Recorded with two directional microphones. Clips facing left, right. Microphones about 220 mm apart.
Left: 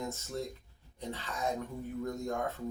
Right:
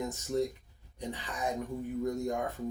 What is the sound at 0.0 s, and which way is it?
Speech, 15° right (ahead or behind).